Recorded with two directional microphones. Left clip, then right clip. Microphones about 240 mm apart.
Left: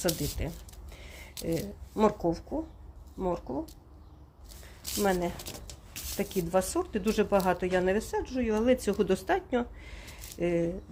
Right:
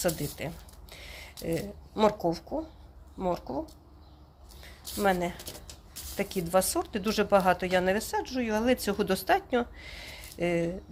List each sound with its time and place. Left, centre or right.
0.0 s speech: centre
4.6 s a sound: centre
5.9 s speech: centre